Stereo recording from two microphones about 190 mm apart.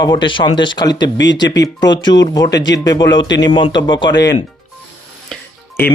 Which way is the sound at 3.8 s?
20° left (ahead or behind).